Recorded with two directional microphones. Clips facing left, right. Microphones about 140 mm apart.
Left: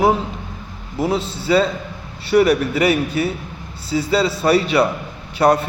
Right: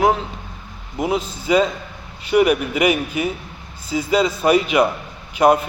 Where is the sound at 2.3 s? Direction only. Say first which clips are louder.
Left 1 dB; 15° right (ahead or behind).